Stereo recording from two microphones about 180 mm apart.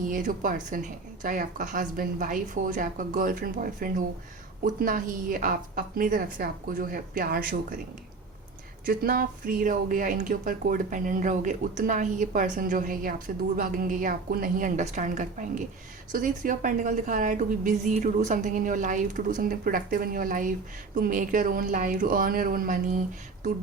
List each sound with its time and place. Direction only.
0.1 s speech: 45° right (ahead or behind)
8.9 s speech: 55° right (ahead or behind)